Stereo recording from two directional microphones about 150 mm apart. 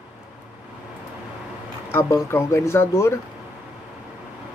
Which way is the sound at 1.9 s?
20° left (ahead or behind).